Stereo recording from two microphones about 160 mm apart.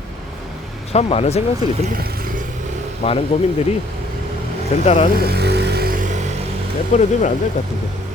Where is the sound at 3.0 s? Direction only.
35° left (ahead or behind).